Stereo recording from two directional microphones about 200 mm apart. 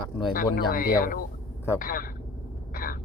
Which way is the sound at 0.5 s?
45° left (ahead or behind).